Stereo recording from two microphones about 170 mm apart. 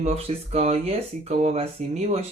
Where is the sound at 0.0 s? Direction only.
40° right (ahead or behind).